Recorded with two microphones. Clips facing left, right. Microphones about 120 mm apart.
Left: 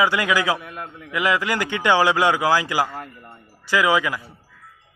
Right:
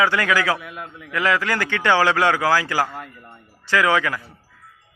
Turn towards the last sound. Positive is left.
turn(degrees=15)  # may be behind; listen again after turning